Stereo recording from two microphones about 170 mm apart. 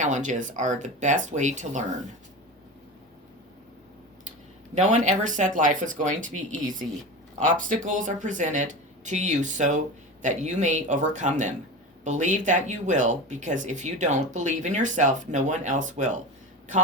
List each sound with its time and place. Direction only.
0.0 s speech: 45° right (ahead or behind)
4.7 s speech: 45° right (ahead or behind)